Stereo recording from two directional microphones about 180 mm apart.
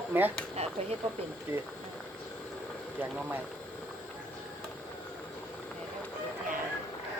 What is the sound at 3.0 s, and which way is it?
Speech, 10° right (ahead or behind).